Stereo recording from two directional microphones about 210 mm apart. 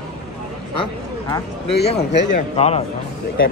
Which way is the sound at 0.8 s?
20° left (ahead or behind).